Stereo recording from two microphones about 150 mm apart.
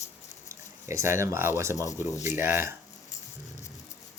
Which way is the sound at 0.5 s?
20° right (ahead or behind).